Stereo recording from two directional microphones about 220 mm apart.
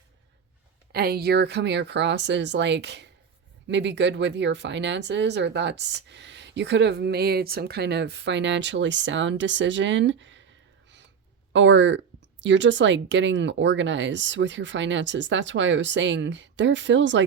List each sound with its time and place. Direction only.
0.9 s speech: 45° right (ahead or behind)
11.5 s speech: 55° right (ahead or behind)